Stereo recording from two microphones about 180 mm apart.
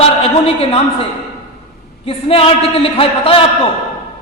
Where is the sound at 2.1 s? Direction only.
30° left (ahead or behind).